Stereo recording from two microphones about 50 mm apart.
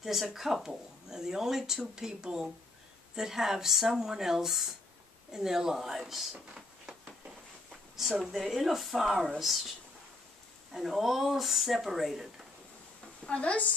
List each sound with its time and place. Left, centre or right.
0.0 s speech: centre
6.5 s a sound: centre
7.7 s a sound: centre
8.2 s speech: centre
10.7 s speech: centre
13.2 s a woman's voice: left